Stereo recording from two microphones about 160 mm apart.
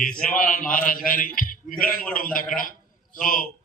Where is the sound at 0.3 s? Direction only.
60° left (ahead or behind).